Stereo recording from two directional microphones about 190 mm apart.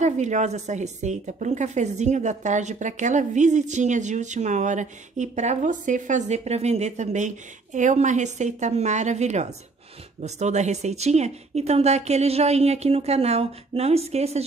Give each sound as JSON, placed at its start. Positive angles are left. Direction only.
{"t": 0.0, "sound": "a woman's voice", "side_deg": -40}